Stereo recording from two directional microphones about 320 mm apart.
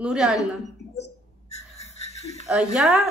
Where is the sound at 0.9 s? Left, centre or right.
Left.